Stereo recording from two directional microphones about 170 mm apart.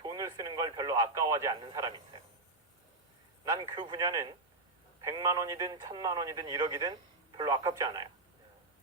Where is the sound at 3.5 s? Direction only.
20° right (ahead or behind).